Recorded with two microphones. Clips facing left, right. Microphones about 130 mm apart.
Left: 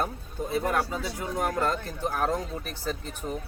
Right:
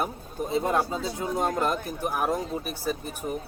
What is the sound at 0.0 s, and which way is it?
Speech, 15° right (ahead or behind).